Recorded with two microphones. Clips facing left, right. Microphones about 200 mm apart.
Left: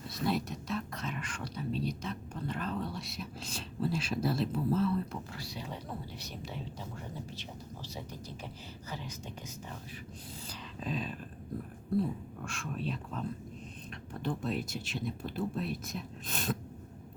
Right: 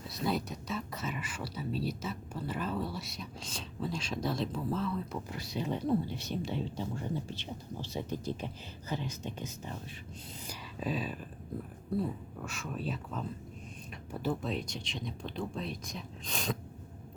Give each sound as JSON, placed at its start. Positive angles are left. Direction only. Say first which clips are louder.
{"t": 0.1, "sound": "speech", "louder": "left 1 dB", "side_deg": 0}
{"t": 5.3, "sound": "speech", "louder": "right 7 dB", "side_deg": -20}
{"t": 10.4, "sound": "speech", "louder": "right 4 dB", "side_deg": -5}